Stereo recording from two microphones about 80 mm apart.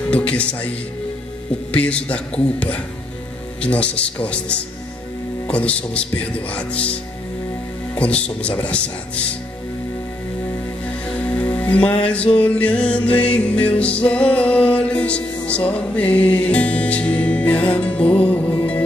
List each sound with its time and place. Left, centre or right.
0.1 s speech: centre
1.7 s speech: centre
10.9 s music: centre